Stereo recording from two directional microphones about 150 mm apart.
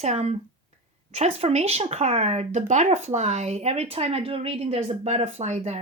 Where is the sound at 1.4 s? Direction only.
45° right (ahead or behind).